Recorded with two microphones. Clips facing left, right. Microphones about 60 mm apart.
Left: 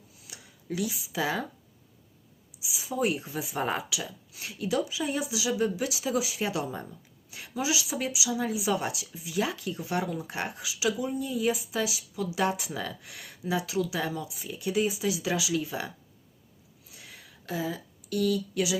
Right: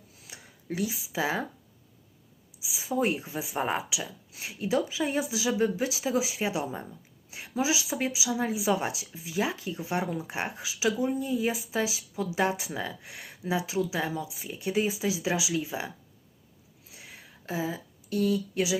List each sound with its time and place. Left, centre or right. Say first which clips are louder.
0.3 s a sound: even; right
1.0 s speech: right 1 dB; right
2.7 s speech: right 1 dB; right
3.2 s speech: even; right
16.9 s a sound: right 1 dB; right
18.1 s speech: even; right